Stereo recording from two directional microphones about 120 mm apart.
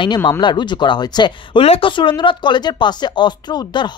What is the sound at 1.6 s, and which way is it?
Speech, 50° left (ahead or behind).